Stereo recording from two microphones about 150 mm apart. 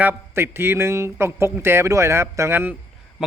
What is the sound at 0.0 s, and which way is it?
Speech, 15° right (ahead or behind).